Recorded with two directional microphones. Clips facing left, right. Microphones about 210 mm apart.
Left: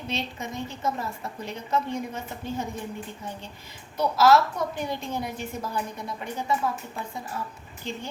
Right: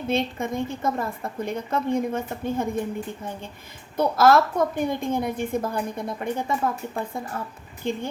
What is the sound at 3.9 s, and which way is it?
A woman's voice, 50° right (ahead or behind).